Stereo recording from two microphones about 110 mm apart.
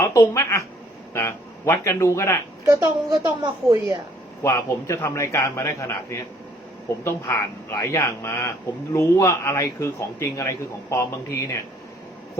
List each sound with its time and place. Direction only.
0.0 s a man's voice: 30° left (ahead or behind)
2.6 s a child's voice: 25° right (ahead or behind)
4.4 s a man's voice: 25° left (ahead or behind)